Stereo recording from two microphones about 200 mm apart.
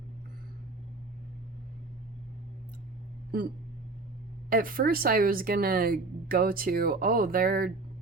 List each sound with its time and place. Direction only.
4.4 s speech: 45° right (ahead or behind)